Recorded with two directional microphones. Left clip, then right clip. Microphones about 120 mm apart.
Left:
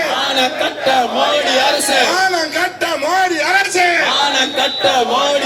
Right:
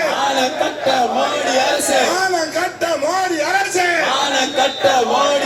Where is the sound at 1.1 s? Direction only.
25° left (ahead or behind).